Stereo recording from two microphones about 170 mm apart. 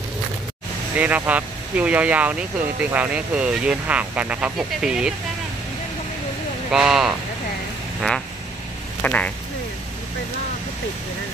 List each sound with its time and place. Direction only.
0.9 s speech: 10° right (ahead or behind)
6.7 s speech: 5° right (ahead or behind)
9.0 s speech: 10° left (ahead or behind)